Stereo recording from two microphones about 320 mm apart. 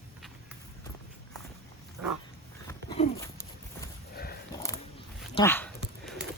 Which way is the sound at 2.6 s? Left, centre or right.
Centre.